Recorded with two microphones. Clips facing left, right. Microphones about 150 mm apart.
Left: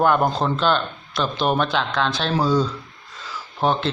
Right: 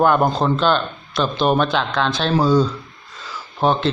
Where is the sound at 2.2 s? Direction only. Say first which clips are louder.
Right 5 dB; 20° right (ahead or behind).